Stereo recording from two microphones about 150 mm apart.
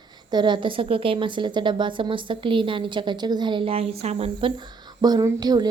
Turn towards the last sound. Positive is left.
turn(degrees=-25)  # may be behind; listen again after turning